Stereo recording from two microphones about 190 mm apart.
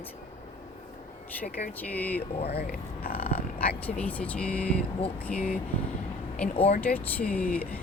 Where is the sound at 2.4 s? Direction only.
55° left (ahead or behind).